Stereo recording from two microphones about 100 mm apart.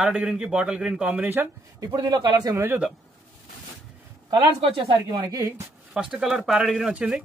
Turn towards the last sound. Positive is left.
turn(degrees=-10)  # may be behind; listen again after turning